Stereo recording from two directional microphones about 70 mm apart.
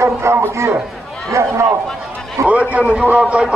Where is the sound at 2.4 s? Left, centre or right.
Centre.